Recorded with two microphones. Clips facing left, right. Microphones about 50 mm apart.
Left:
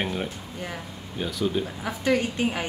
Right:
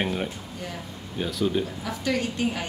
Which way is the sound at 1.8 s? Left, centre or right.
Left.